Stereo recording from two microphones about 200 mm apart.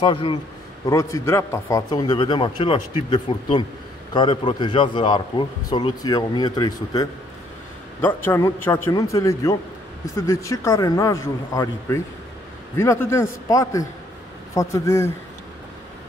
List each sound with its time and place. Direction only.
0.0 s a man's voice: 25° left (ahead or behind)